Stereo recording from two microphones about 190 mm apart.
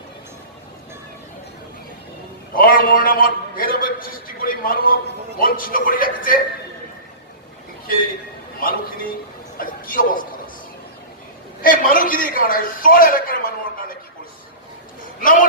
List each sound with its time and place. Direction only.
2.6 s a man's voice: 50° left (ahead or behind)
9.6 s a man's voice: 50° left (ahead or behind)
11.6 s a man's voice: 45° left (ahead or behind)
15.2 s a woman's voice: 45° left (ahead or behind)